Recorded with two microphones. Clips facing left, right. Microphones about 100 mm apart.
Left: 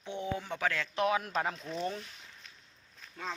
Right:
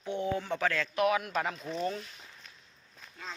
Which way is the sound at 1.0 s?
30° left (ahead or behind).